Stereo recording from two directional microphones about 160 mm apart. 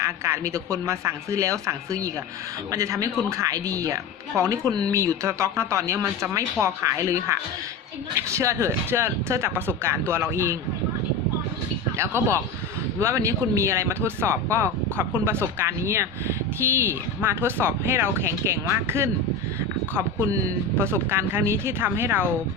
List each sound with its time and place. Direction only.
0.3 s speech: 20° right (ahead or behind)
11.9 s speech: 15° right (ahead or behind)